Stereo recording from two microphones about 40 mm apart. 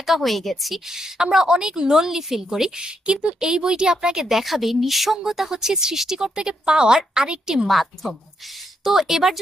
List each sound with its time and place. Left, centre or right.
0.0 s speech: centre
0.9 s speech: centre
7.6 s speech: centre